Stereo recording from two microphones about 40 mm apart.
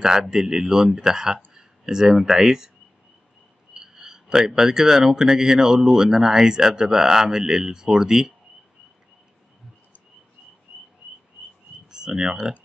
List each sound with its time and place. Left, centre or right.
0.0 s speech: centre
3.7 s speech: centre
11.9 s speech: centre